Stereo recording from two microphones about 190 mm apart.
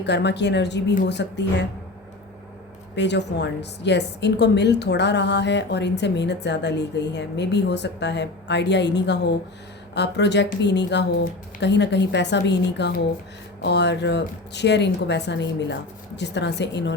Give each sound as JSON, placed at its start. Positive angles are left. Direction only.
{"t": 0.0, "sound": "a woman's voice", "side_deg": 65}
{"t": 2.9, "sound": "a woman's voice", "side_deg": 65}